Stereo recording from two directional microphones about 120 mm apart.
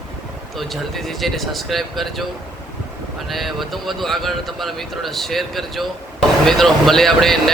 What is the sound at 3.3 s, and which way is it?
Speech, centre (ahead or behind).